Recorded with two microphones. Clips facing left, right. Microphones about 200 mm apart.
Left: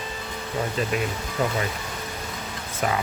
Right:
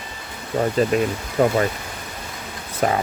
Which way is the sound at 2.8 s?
40° right (ahead or behind).